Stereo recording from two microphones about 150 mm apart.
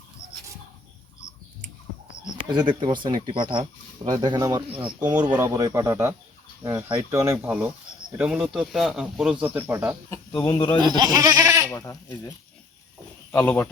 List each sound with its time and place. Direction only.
2.5 s speech: 30° right (ahead or behind)
6.6 s fowl: 20° right (ahead or behind)
6.9 s speech: 20° right (ahead or behind)
10.1 s speech: 20° left (ahead or behind)
10.8 s speech: 30° right (ahead or behind)
11.7 s speech: 20° left (ahead or behind)
13.3 s speech: 10° left (ahead or behind)